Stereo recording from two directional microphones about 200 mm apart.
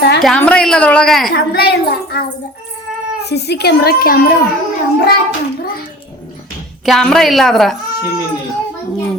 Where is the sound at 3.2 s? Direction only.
55° left (ahead or behind).